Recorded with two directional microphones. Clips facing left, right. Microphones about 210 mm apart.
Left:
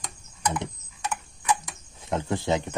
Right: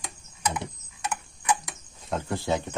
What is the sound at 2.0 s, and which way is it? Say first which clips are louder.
Speech: left 2 dB; 20° left (ahead or behind).